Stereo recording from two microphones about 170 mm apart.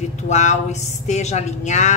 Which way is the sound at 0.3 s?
45° left (ahead or behind).